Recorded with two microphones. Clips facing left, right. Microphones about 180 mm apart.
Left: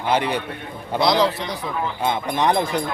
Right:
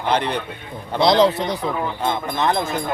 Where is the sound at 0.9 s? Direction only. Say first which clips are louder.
Right 3 dB; 20° right (ahead or behind).